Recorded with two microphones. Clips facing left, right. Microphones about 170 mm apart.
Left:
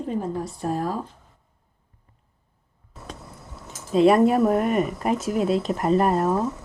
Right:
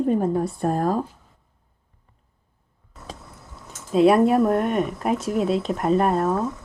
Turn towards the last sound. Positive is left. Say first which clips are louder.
# even
turn(degrees=5)  # may be behind; listen again after turning